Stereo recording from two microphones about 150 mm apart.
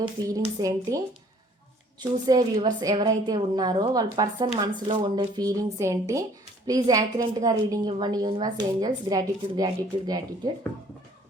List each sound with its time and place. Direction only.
0.3 s a woman's voice: 25° right (ahead or behind)